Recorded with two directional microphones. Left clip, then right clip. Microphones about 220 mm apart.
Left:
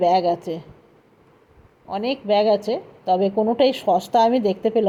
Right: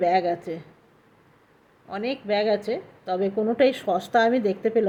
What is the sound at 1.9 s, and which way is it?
Speech, 15° left (ahead or behind).